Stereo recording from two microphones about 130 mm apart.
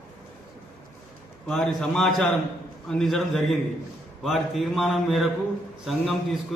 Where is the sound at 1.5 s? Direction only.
5° left (ahead or behind).